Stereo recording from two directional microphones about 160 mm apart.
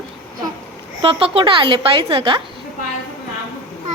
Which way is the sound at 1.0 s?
35° right (ahead or behind).